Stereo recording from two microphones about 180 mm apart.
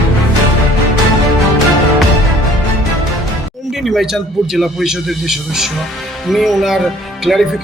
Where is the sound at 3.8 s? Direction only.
Centre (ahead or behind).